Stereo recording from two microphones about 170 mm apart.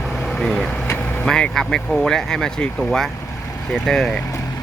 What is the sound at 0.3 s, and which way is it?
Speech, 5° left (ahead or behind).